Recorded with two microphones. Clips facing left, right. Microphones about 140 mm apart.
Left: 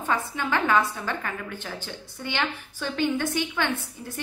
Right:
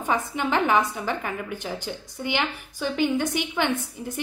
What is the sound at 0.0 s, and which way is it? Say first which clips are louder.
A woman's voice: right 2 dB; 20° right (ahead or behind).